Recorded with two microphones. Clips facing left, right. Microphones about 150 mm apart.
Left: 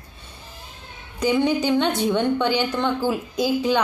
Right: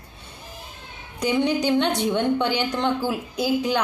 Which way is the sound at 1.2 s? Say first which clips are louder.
Left 2 dB; 15° right (ahead or behind).